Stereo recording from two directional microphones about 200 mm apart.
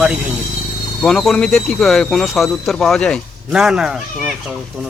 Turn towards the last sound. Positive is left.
turn(degrees=-5)  # may be behind; listen again after turning